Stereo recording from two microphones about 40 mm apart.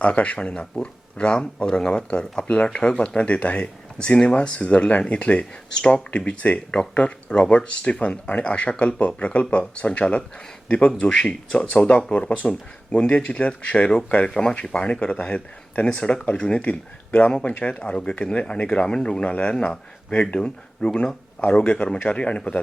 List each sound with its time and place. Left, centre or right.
0.0 s speech: left